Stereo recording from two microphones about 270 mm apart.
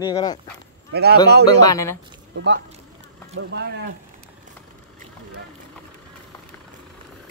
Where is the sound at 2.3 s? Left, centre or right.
Right.